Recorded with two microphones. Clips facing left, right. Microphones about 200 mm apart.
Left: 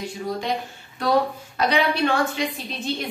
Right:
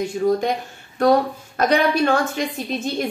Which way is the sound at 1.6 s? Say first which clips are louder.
Right 3 dB; 45° right (ahead or behind).